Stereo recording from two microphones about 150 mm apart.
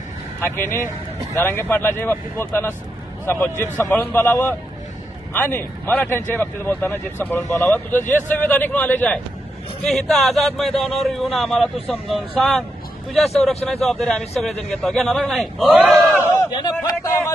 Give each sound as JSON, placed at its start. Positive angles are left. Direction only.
{"t": 0.4, "sound": "a man's voice", "side_deg": 15}
{"t": 16.1, "sound": "speech", "side_deg": 20}
{"t": 16.8, "sound": "a sound", "side_deg": 25}